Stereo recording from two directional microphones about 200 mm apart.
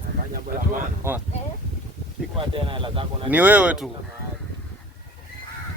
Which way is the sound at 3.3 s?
10° right (ahead or behind).